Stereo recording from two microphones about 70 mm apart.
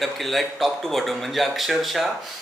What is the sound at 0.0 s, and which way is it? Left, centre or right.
Speech, centre.